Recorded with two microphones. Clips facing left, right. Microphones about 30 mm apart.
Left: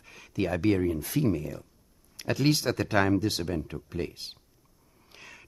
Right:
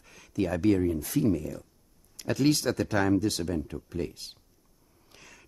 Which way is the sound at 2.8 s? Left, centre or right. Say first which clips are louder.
Left 3 dB; left.